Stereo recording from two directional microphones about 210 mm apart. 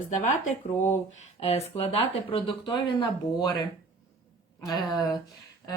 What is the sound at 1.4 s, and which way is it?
Speech, 30° left (ahead or behind).